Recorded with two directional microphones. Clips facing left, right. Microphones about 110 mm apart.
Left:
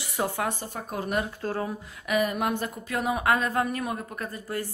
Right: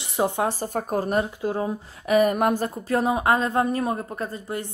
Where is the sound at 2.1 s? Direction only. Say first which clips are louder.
Right 6 dB; 45° right (ahead or behind).